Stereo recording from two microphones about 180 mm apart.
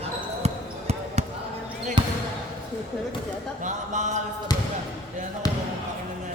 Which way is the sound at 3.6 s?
40° right (ahead or behind).